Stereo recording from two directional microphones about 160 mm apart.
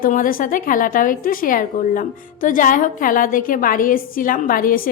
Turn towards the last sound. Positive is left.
turn(degrees=60)  # may be behind; listen again after turning